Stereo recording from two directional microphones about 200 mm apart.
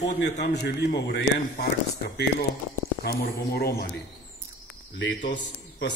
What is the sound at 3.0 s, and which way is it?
Speech, 50° left (ahead or behind).